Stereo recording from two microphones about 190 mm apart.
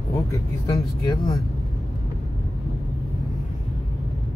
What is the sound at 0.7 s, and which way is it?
Speech, 20° left (ahead or behind).